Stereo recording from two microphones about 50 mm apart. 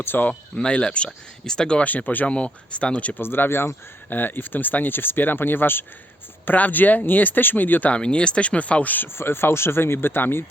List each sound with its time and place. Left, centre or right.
0.0 s speech: left
0.5 s speech: left
1.8 s speech: left
3.2 s speech: left
7.9 s speech: left
9.1 s speech: left